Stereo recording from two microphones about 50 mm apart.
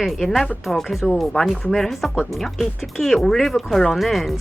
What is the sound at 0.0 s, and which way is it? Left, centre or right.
Speech, centre.